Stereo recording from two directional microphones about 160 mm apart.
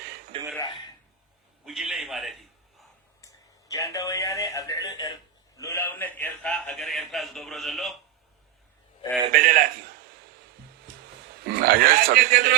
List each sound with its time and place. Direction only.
0.3 s speech: 35° right (ahead or behind)
1.6 s a man's voice: 5° right (ahead or behind)
3.2 s a man's voice: 20° left (ahead or behind); by 7.9 s centre (ahead or behind)
9.3 s a man's voice: 55° right (ahead or behind)
11.4 s speech: 65° right (ahead or behind)